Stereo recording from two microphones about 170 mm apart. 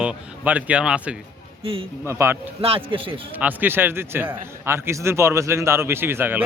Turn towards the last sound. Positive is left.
turn(degrees=-10)  # may be behind; listen again after turning